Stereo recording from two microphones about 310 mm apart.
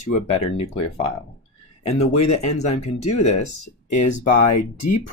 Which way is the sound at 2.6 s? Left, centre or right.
Left.